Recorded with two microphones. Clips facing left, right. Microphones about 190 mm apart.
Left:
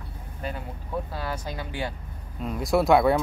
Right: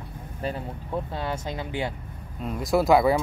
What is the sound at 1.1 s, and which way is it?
Speech, 25° right (ahead or behind).